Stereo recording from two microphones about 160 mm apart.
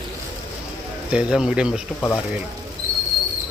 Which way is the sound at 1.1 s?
5° right (ahead or behind).